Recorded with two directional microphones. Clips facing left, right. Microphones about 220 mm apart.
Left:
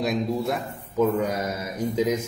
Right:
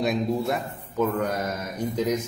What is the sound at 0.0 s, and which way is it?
A man's voice, centre (ahead or behind).